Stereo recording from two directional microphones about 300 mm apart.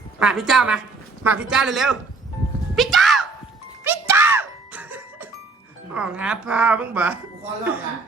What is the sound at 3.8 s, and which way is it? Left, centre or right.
Music, centre.